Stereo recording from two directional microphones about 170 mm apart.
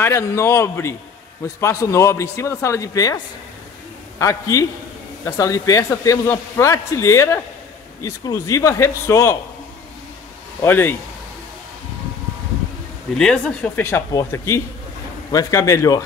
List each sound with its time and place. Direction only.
0.0 s a man's voice: 15° left (ahead or behind)
4.2 s a man's voice: 20° left (ahead or behind)
10.6 s a man's voice: 15° left (ahead or behind)
13.2 s a man's voice: 5° left (ahead or behind)